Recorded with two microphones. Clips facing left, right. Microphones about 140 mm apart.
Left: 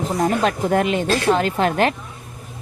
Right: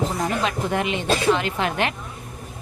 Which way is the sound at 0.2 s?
45° left (ahead or behind).